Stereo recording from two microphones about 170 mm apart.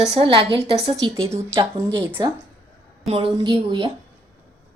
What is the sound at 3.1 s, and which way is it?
Speech, 30° right (ahead or behind).